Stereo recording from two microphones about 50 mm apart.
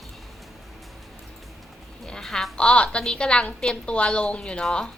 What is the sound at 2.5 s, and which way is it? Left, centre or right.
A woman's voice, left.